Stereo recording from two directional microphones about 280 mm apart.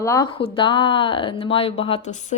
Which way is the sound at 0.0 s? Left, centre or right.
Centre.